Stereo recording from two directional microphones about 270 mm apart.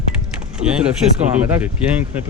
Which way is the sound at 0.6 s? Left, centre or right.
Right.